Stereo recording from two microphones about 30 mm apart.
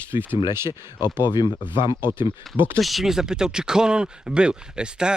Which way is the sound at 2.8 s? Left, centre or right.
Centre.